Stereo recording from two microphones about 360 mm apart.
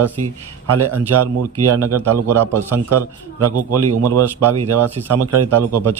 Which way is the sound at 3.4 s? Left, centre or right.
Right.